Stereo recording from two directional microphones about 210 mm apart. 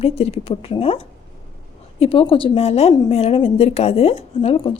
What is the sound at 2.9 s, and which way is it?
Speech, 20° left (ahead or behind).